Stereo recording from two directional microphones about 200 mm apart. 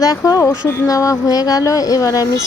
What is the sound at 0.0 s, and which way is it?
Speech, 15° left (ahead or behind).